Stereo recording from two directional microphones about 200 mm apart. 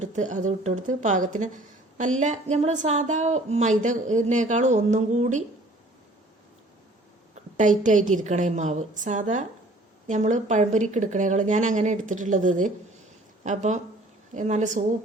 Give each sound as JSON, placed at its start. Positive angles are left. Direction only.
{"t": 0.0, "sound": "a woman's voice", "side_deg": -35}
{"t": 7.5, "sound": "a woman's voice", "side_deg": -40}